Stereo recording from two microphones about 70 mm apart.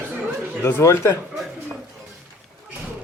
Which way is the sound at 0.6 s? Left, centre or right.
Left.